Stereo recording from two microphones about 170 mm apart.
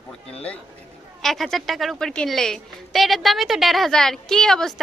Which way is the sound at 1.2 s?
Centre (ahead or behind).